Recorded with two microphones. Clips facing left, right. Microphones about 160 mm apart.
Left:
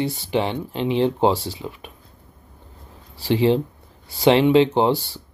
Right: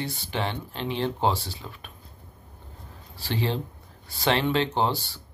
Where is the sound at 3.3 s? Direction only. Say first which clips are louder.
Left 11 dB; 25° left (ahead or behind).